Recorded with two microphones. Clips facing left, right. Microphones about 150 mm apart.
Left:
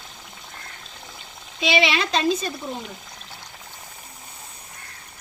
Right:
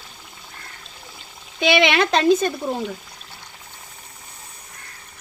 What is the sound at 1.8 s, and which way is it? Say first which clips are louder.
Speech: right 5 dB; 70° right (ahead or behind).